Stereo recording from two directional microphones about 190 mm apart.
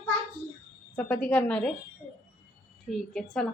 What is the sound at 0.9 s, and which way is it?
Speech, 5° left (ahead or behind).